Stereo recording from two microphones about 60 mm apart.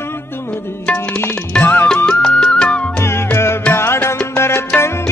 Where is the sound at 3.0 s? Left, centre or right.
Left.